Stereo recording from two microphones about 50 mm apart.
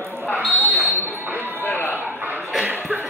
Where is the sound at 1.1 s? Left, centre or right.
Right.